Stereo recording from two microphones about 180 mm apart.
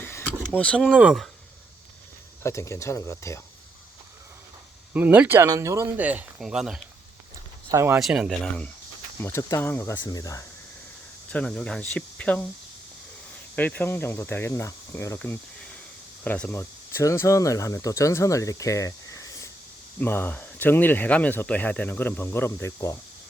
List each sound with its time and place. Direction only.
0.0 s speech: 10° left (ahead or behind)
2.4 s speech: 15° left (ahead or behind)
4.9 s speech: 10° right (ahead or behind)
7.7 s speech: 15° right (ahead or behind)
7.9 s speech: 5° right (ahead or behind)
9.2 s speech: 15° left (ahead or behind)
11.3 s speech: 5° left (ahead or behind)
13.6 s speech: 10° left (ahead or behind)